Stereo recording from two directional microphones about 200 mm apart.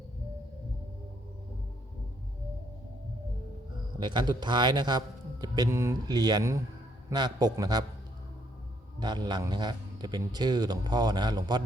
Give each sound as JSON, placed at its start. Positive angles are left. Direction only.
{"t": 4.0, "sound": "a man's voice", "side_deg": -20}
{"t": 9.0, "sound": "a man's voice", "side_deg": -20}